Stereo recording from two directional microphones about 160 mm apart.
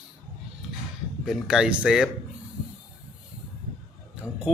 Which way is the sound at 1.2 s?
5° right (ahead or behind).